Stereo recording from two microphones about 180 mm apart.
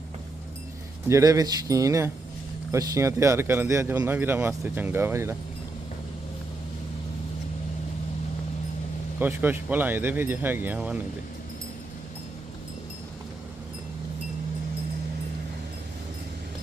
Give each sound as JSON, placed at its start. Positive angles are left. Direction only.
{"t": 1.0, "sound": "speech", "side_deg": -15}
{"t": 9.1, "sound": "speech", "side_deg": -10}